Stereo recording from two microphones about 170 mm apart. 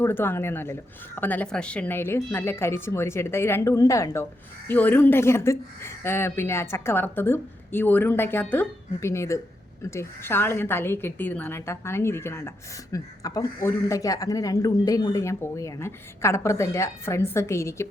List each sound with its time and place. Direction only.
0.0 s a woman's voice: 10° left (ahead or behind)